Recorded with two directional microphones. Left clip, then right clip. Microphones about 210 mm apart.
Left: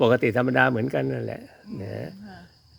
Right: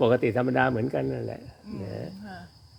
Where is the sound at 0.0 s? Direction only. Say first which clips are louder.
Left 2 dB; 30° left (ahead or behind).